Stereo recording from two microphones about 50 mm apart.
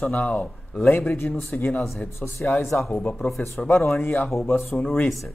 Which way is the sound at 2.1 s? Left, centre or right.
Left.